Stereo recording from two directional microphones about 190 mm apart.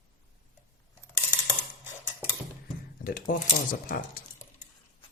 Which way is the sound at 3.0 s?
50° left (ahead or behind).